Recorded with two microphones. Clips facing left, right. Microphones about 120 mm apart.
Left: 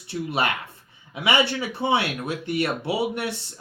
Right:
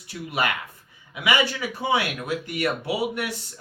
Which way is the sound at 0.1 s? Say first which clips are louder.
Left 2 dB; 25° left (ahead or behind).